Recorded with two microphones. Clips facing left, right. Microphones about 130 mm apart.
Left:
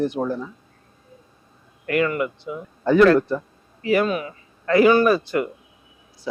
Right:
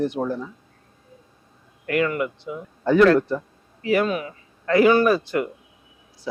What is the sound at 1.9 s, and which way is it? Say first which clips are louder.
A man's voice: left 1 dB; 15° left (ahead or behind).